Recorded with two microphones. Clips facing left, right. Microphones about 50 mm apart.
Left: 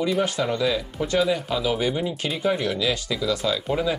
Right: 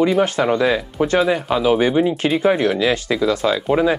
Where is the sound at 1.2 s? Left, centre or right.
Right.